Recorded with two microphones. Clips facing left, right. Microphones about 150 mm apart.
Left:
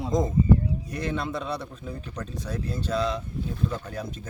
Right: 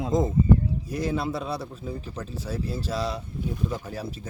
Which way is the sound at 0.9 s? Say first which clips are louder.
Right 3 dB; 5° right (ahead or behind).